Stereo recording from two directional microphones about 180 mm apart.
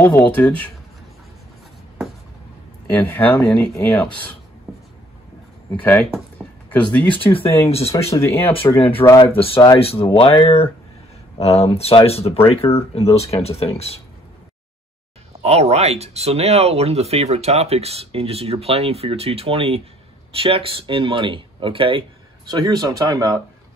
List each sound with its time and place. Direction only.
0.0 s speech: 10° left (ahead or behind)
2.9 s speech: 10° left (ahead or behind)
5.8 s speech: 10° left (ahead or behind)
6.3 s a sound: 5° left (ahead or behind)
7.7 s speech: 35° left (ahead or behind)
8.2 s speech: 15° left (ahead or behind); by 13.9 s 35° left (ahead or behind)
15.4 s speech: 35° right (ahead or behind); by 23.4 s 20° right (ahead or behind)